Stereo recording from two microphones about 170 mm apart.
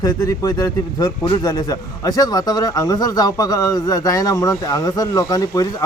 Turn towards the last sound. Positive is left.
turn(degrees=20)  # may be behind; listen again after turning